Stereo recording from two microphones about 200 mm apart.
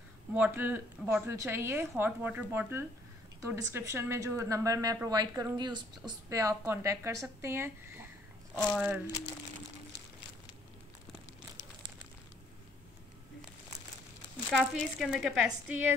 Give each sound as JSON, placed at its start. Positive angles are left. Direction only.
{"t": 0.3, "sound": "a woman's voice", "side_deg": -10}
{"t": 8.5, "sound": "speech", "side_deg": 0}
{"t": 14.5, "sound": "speech", "side_deg": 0}